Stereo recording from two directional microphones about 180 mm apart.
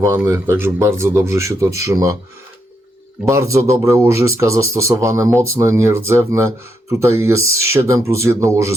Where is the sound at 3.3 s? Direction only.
15° right (ahead or behind).